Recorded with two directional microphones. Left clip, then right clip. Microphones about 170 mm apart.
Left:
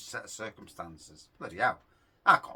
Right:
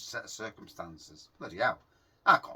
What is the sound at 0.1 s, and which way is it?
Speech, 20° left (ahead or behind).